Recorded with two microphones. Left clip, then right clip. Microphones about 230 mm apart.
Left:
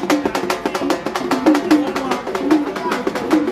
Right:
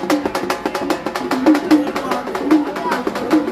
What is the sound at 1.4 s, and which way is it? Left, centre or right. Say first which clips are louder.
Music: right 1 dB; left.